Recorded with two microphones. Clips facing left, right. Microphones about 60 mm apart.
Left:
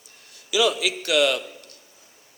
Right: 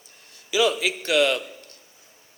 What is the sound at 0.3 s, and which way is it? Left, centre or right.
A man's voice, right.